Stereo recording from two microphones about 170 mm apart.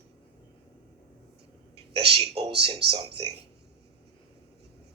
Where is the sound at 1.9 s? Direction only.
70° right (ahead or behind).